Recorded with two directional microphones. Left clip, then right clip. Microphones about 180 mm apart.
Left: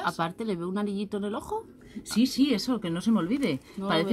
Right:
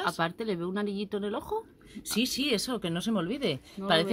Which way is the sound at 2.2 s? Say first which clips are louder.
Left 3 dB; 50° right (ahead or behind).